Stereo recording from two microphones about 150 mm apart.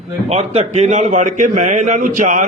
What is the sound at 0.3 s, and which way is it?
A man's voice, 45° right (ahead or behind).